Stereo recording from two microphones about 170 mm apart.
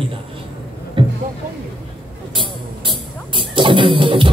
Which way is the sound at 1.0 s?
30° right (ahead or behind).